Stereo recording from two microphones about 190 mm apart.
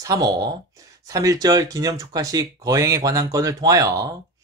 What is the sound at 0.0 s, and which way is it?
Speech, 20° right (ahead or behind).